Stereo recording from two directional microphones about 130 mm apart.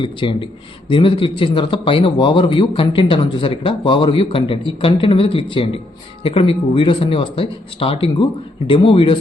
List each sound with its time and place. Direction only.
0.0 s a man's voice: 40° left (ahead or behind)